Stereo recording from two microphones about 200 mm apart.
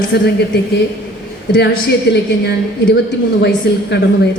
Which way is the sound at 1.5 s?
55° left (ahead or behind).